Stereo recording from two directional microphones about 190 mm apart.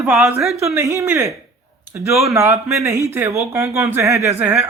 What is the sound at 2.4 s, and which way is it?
Speech, 15° right (ahead or behind).